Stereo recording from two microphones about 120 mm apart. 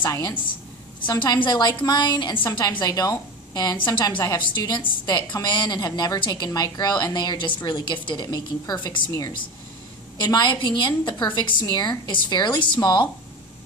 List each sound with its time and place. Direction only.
0.0 s a woman's voice: 30° left (ahead or behind)
10.1 s a woman's voice: 35° left (ahead or behind)